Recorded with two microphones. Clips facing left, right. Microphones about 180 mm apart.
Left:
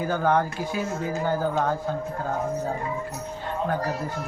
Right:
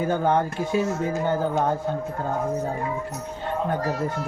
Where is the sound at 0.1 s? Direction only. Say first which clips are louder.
Left 2 dB; 20° right (ahead or behind).